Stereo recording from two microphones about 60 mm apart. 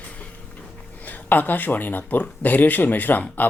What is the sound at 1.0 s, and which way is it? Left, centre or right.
Speech, left.